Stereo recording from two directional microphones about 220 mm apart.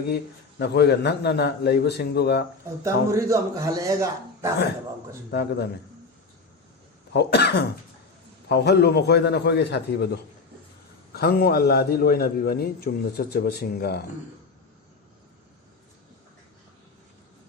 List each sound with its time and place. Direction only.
0.6 s a man's voice: 50° left (ahead or behind)
2.8 s a man's voice: 15° right (ahead or behind)
5.3 s a man's voice: 45° left (ahead or behind)
7.1 s a man's voice: 45° left (ahead or behind)
11.1 s a man's voice: 45° left (ahead or behind)